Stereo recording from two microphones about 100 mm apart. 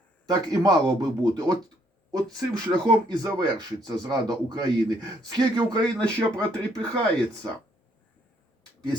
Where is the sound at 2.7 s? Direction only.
45° right (ahead or behind).